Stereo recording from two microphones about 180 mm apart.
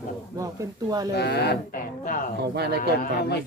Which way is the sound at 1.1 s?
65° left (ahead or behind).